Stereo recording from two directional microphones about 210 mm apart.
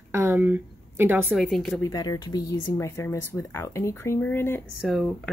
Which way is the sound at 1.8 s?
20° left (ahead or behind).